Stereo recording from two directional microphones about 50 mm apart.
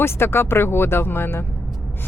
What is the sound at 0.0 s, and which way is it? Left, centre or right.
Speech, left.